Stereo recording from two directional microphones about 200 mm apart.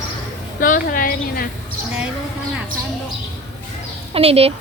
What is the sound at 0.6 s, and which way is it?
Speech, 40° left (ahead or behind).